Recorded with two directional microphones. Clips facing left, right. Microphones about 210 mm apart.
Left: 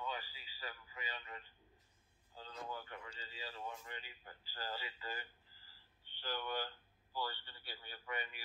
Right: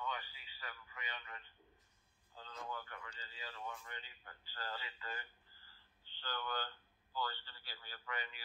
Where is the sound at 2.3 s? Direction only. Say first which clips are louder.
Left 1 dB; 30° left (ahead or behind).